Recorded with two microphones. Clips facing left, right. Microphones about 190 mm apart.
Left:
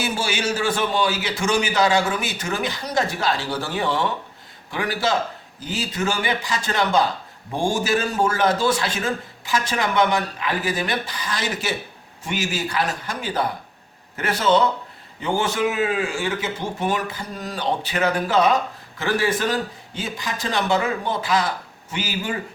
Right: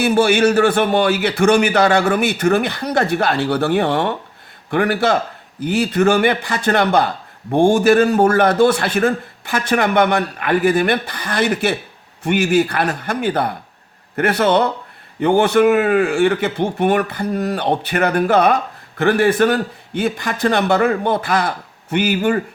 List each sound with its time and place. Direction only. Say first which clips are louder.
0.0 s a man's voice: right 11 dB; 60° right (ahead or behind)